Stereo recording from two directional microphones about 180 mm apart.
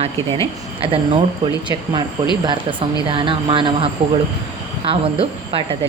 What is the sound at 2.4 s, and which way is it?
Speech, 25° right (ahead or behind).